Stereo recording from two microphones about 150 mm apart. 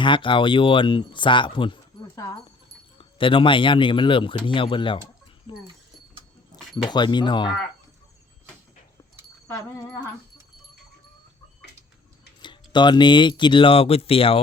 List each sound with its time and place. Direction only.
0.0 s speech: 35° left (ahead or behind)
3.0 s speech: 35° left (ahead or behind)
6.9 s speech: 30° left (ahead or behind)
9.5 s speech: 20° left (ahead or behind)
12.4 s speech: 30° left (ahead or behind)